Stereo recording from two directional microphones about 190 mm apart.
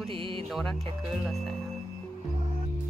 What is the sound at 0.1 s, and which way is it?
Music, 30° right (ahead or behind).